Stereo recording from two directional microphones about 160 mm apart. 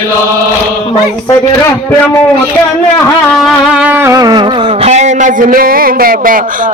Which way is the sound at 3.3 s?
Centre (ahead or behind).